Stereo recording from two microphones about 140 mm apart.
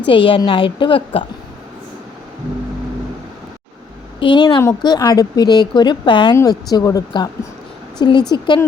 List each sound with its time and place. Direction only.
0.1 s a woman's voice: 35° left (ahead or behind)
4.2 s a woman's voice: 35° left (ahead or behind)